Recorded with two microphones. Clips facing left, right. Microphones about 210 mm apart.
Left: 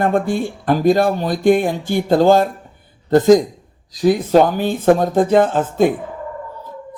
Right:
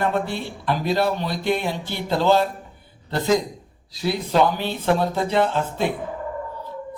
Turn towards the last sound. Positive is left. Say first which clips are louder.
# left 8 dB
turn(degrees=50)  # may be behind; listen again after turning